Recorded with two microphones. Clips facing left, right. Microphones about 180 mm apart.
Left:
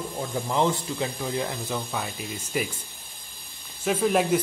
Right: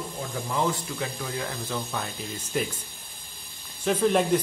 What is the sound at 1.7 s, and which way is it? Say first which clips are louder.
Speech: left 1 dB; 10° left (ahead or behind).